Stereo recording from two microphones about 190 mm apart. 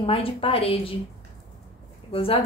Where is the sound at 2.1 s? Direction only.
30° left (ahead or behind).